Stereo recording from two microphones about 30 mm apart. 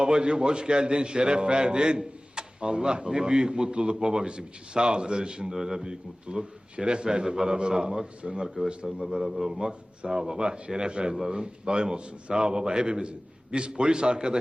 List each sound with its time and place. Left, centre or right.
0.0 s a man's voice: right
8.2 s a man's voice: right
9.2 s a man's voice: centre
9.5 s a man's voice: right